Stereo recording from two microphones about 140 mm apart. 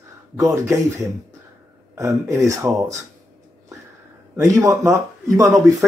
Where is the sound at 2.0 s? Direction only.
20° right (ahead or behind).